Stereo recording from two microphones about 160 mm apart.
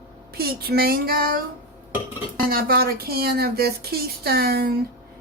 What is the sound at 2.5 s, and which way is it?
Speech, 70° right (ahead or behind).